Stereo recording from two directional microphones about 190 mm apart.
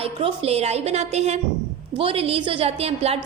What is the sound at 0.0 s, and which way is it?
A woman's voice, 30° right (ahead or behind).